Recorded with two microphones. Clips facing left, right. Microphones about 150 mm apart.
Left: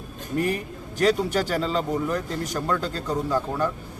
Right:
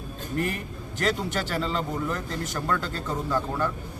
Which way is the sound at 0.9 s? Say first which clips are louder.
Left 6 dB; 10° left (ahead or behind).